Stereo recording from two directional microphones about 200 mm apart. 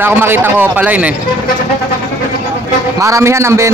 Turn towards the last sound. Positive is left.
turn(degrees=-15)  # may be behind; listen again after turning